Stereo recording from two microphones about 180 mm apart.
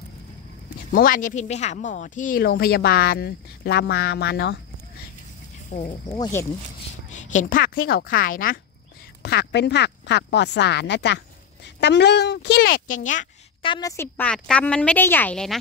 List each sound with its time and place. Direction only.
0.9 s speech: 50° left (ahead or behind); by 4.6 s 65° left (ahead or behind)
5.7 s speech: 40° left (ahead or behind)
6.0 s speech: 20° left (ahead or behind)
7.1 s speech: 45° left (ahead or behind)
9.2 s speech: 65° left (ahead or behind); by 13.3 s 45° left (ahead or behind)
13.6 s a woman's voice: 25° left (ahead or behind); by 15.5 s 5° left (ahead or behind)